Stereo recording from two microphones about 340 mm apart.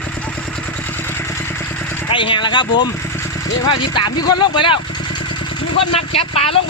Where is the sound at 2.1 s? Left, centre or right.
Centre.